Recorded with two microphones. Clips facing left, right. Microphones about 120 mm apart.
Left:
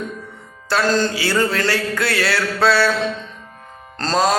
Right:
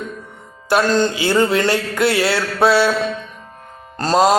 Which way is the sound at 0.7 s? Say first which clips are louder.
Right 3 dB; 20° right (ahead or behind).